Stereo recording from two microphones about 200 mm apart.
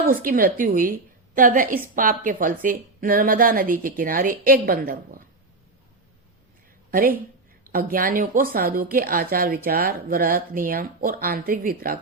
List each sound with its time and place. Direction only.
0.0 s speech: 45° right (ahead or behind)
6.9 s speech: 45° right (ahead or behind)